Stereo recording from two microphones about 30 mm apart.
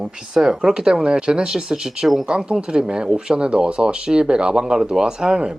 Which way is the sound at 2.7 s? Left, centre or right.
Right.